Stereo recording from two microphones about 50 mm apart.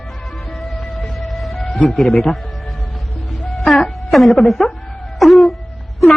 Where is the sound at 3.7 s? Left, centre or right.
Centre.